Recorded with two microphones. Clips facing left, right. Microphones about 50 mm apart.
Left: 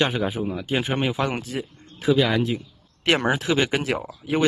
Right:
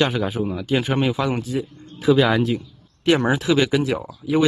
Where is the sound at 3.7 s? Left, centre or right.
Left.